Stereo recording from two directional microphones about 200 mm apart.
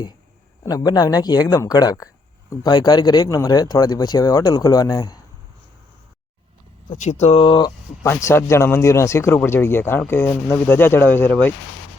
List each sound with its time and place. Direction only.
0.6 s speech: 15° left (ahead or behind)
6.9 s speech: 35° left (ahead or behind)
8.0 s a man's voice: 10° left (ahead or behind)